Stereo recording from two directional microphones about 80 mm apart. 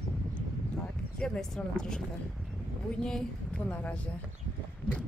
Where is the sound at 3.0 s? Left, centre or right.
Centre.